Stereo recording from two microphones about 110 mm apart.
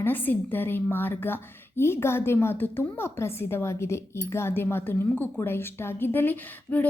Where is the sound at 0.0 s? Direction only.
15° left (ahead or behind).